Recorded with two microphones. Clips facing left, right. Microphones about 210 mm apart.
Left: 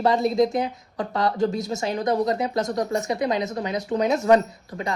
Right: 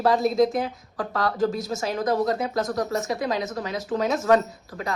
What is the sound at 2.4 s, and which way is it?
Speech, 20° left (ahead or behind).